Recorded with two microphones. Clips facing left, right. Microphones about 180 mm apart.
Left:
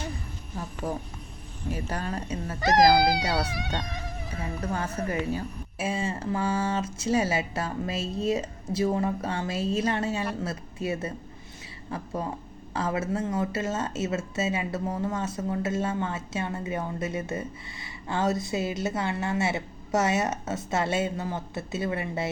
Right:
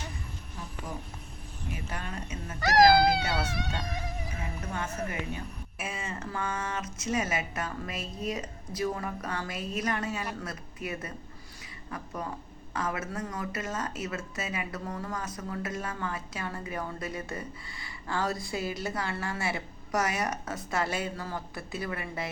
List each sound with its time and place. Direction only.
1.7 s speech: 40° left (ahead or behind)
2.6 s speech: 20° left (ahead or behind)
4.4 s speech: 35° left (ahead or behind)